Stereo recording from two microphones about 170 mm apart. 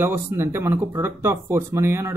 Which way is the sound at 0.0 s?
15° right (ahead or behind).